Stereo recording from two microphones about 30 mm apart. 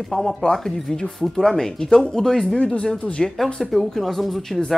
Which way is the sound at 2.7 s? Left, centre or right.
Left.